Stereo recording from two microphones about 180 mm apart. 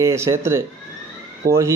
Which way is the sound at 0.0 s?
15° right (ahead or behind).